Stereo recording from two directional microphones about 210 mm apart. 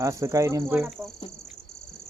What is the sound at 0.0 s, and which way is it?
Speech, 15° right (ahead or behind).